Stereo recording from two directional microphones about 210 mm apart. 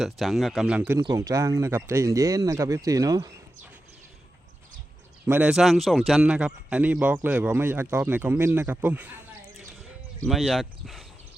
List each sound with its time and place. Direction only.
0.0 s speech: centre (ahead or behind)
0.9 s a man's voice: 15° right (ahead or behind)
5.2 s a man's voice: 5° right (ahead or behind)
10.2 s speech: centre (ahead or behind)